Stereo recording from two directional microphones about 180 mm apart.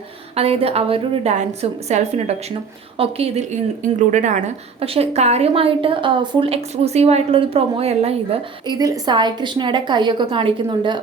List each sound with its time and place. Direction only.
0.3 s a woman's voice: 35° right (ahead or behind)